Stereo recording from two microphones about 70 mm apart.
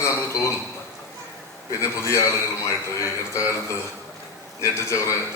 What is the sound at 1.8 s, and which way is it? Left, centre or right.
Speech, left.